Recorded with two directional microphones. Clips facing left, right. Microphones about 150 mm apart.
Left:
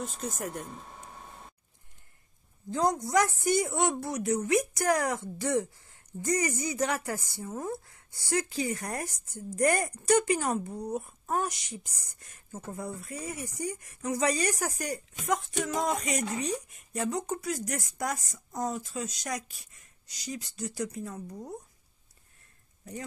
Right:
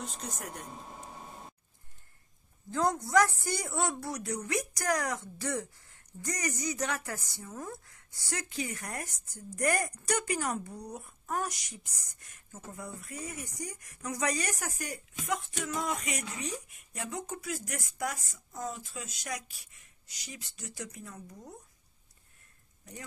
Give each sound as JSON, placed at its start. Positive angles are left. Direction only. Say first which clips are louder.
{"t": 0.0, "sound": "speech", "louder": "left 5 dB", "side_deg": 0}
{"t": 2.7, "sound": "speech", "louder": "left 1 dB", "side_deg": 20}